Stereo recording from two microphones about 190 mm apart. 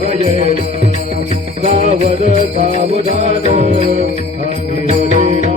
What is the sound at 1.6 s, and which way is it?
Jingle bell, 30° right (ahead or behind).